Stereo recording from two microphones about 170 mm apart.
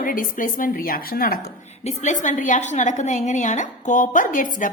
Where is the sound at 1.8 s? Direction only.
45° left (ahead or behind).